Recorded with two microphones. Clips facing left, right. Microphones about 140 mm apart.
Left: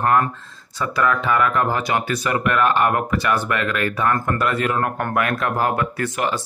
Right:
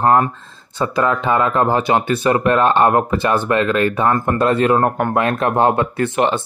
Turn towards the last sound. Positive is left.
turn(degrees=-25)  # may be behind; listen again after turning